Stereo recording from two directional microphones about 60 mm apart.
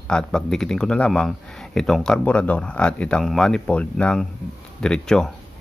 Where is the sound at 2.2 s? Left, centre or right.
Left.